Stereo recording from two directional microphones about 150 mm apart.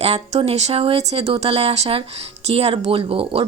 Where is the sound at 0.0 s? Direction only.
45° right (ahead or behind).